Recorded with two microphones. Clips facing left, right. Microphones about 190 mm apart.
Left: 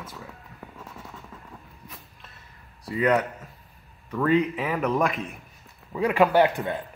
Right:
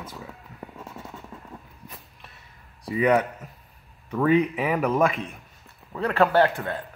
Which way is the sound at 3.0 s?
Centre (ahead or behind).